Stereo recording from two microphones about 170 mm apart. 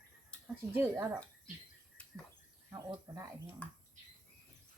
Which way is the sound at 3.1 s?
20° right (ahead or behind).